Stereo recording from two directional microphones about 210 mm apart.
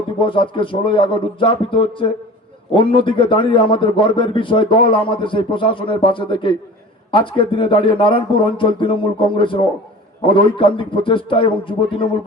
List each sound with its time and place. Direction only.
0.2 s speech: 25° left (ahead or behind)